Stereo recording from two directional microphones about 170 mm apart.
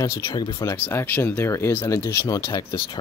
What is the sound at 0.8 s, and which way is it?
Speech, 10° left (ahead or behind).